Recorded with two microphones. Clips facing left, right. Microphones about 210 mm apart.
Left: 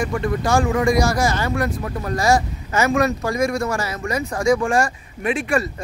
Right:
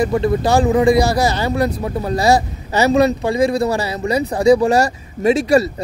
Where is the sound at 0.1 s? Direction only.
30° right (ahead or behind).